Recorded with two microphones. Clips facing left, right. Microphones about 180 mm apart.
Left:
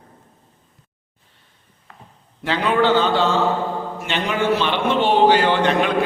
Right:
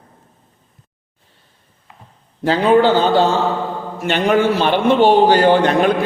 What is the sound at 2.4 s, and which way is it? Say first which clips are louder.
A man's voice: right 6 dB; 40° right (ahead or behind).